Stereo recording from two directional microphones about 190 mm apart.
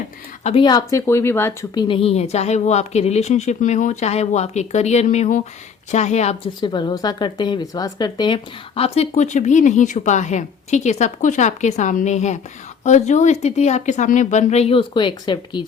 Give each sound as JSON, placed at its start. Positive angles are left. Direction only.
{"t": 0.4, "sound": "speech", "side_deg": 25}
{"t": 6.6, "sound": "speech", "side_deg": 25}